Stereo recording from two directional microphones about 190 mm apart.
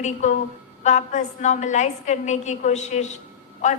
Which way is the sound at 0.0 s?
40° left (ahead or behind).